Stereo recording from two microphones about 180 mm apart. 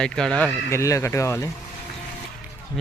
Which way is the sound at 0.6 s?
15° left (ahead or behind).